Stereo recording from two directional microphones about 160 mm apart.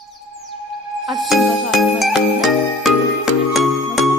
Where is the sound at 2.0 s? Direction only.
Centre (ahead or behind).